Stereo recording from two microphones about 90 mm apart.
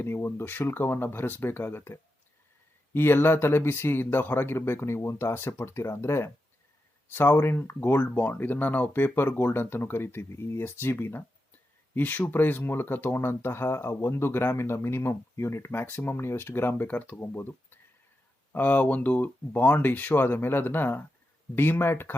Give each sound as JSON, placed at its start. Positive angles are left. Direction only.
{"t": 0.0, "sound": "speech", "side_deg": 25}